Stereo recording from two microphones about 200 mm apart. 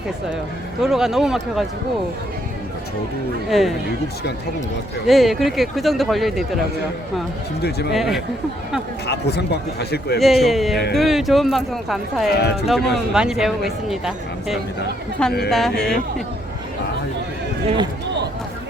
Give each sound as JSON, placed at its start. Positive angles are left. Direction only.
{"t": 0.8, "sound": "speech", "side_deg": 0}
{"t": 3.5, "sound": "speech", "side_deg": 0}
{"t": 5.0, "sound": "speech", "side_deg": 0}
{"t": 7.6, "sound": "speech", "side_deg": 55}
{"t": 7.9, "sound": "speech", "side_deg": 0}
{"t": 9.0, "sound": "speech", "side_deg": 55}
{"t": 10.2, "sound": "speech", "side_deg": 0}
{"t": 12.3, "sound": "speech", "side_deg": 55}
{"t": 12.6, "sound": "speech", "side_deg": 0}